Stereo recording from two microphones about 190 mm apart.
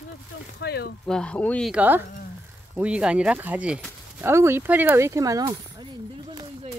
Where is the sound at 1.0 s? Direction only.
5° left (ahead or behind).